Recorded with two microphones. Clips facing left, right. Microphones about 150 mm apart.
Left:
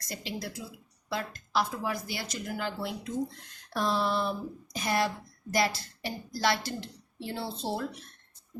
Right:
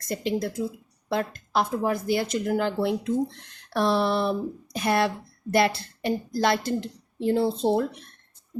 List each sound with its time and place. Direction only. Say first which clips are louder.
0.0 s speech: right 11 dB; 55° right (ahead or behind)